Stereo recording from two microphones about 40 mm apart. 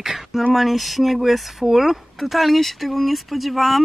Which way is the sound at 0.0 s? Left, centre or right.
Centre.